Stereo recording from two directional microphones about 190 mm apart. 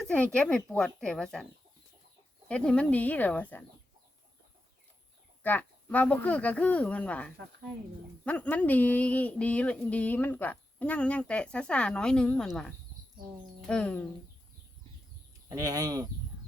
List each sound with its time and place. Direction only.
0.0 s speech: 5° left (ahead or behind)
2.5 s speech: 5° left (ahead or behind)
5.4 s speech: 10° left (ahead or behind)
15.4 s speech: 20° right (ahead or behind)